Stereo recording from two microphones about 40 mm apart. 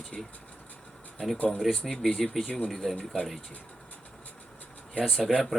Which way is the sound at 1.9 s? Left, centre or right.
Centre.